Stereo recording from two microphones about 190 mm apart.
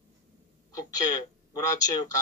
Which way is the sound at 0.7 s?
20° left (ahead or behind).